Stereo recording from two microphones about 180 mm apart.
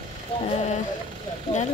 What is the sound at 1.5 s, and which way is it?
Speech, 30° left (ahead or behind).